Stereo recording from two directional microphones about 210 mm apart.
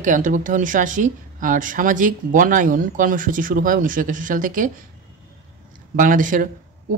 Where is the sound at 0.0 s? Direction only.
40° right (ahead or behind).